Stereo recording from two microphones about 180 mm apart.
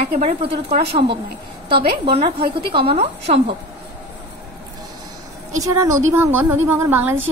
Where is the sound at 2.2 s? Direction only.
30° right (ahead or behind).